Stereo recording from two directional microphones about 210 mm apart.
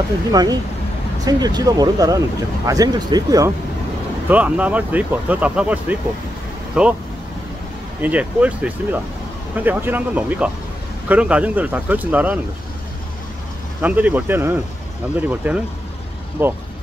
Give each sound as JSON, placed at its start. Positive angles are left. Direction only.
{"t": 0.3, "sound": "speech", "side_deg": -20}
{"t": 8.0, "sound": "speech", "side_deg": -5}
{"t": 13.7, "sound": "speech", "side_deg": -10}